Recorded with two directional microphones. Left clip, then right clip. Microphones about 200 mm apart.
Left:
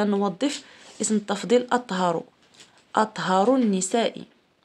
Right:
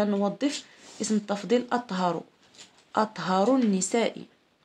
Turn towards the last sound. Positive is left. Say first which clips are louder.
# left 2 dB
turn(degrees=25)  # may be behind; listen again after turning